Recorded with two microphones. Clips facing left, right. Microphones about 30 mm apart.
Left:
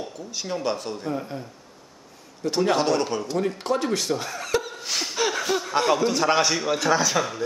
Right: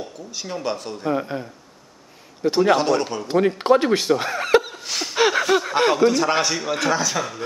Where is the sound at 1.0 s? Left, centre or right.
Right.